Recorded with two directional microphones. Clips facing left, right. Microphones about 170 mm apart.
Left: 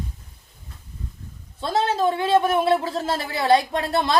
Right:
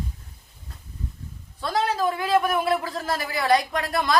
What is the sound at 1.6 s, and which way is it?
Speech, 25° left (ahead or behind).